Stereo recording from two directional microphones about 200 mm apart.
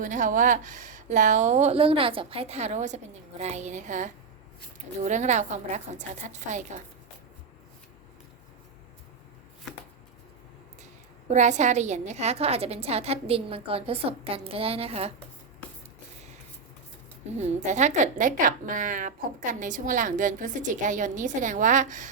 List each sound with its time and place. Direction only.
0.0 s a woman's voice: 40° right (ahead or behind)
11.3 s a woman's voice: 35° right (ahead or behind)
17.3 s a woman's voice: 35° right (ahead or behind)